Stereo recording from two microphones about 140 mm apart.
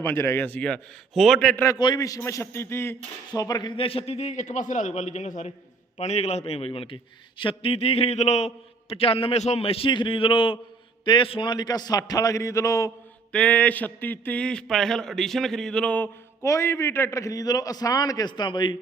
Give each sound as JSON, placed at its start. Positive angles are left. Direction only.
{"t": 0.0, "sound": "a man's voice", "side_deg": 15}
{"t": 1.8, "sound": "a man's voice", "side_deg": 30}
{"t": 13.3, "sound": "a man's voice", "side_deg": 10}
{"t": 16.4, "sound": "a man's voice", "side_deg": 20}